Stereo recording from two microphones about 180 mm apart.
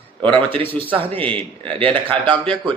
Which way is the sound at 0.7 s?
30° right (ahead or behind).